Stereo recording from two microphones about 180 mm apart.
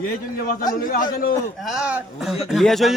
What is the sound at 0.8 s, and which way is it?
Speech, 55° left (ahead or behind).